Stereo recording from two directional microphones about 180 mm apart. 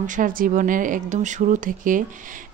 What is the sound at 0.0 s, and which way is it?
Speech, 50° right (ahead or behind).